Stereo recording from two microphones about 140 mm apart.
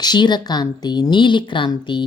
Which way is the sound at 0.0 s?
30° left (ahead or behind).